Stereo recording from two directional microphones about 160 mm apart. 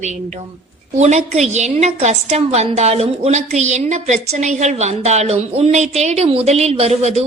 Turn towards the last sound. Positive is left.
turn(degrees=-40)  # may be behind; listen again after turning